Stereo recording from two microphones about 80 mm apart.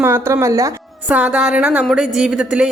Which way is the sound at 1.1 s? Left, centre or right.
Centre.